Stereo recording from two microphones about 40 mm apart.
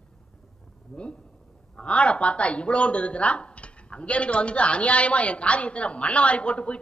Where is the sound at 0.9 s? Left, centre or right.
Left.